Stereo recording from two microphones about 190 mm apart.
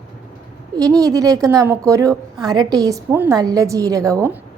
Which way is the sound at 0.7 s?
20° right (ahead or behind).